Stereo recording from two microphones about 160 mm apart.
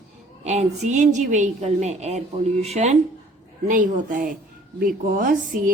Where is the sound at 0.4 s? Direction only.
45° right (ahead or behind).